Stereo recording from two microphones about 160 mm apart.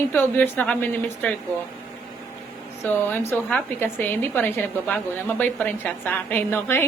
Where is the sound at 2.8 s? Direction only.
15° left (ahead or behind).